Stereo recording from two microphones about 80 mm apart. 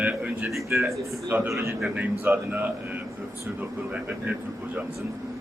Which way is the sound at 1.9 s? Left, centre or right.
Right.